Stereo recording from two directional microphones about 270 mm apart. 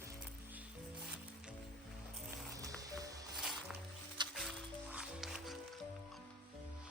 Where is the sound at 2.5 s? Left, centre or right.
Centre.